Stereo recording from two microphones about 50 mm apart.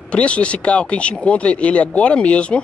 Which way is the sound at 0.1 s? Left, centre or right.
Left.